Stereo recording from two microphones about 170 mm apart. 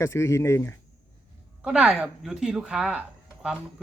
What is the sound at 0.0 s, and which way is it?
Speech, 15° left (ahead or behind).